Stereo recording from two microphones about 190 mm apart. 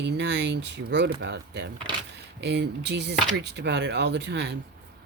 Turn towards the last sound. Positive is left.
turn(degrees=-60)  # may be behind; listen again after turning